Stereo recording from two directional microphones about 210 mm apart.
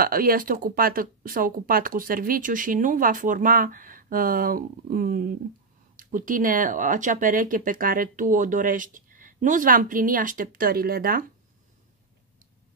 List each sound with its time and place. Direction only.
0.0 s speech: 45° right (ahead or behind)